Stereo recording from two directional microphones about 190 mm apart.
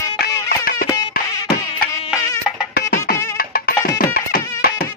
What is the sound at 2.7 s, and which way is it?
Music, 50° left (ahead or behind).